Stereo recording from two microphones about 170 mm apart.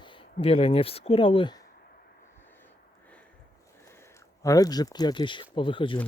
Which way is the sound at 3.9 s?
15° left (ahead or behind).